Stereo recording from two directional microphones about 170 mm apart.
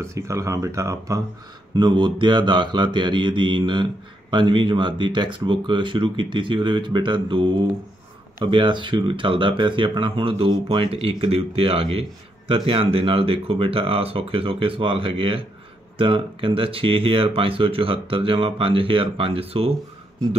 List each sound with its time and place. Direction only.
0.0 s speech: 15° right (ahead or behind)
1.8 s mantra: 25° right (ahead or behind)
8.4 s speech: 30° right (ahead or behind)